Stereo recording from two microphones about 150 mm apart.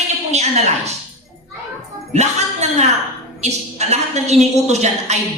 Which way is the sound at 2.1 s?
50° right (ahead or behind).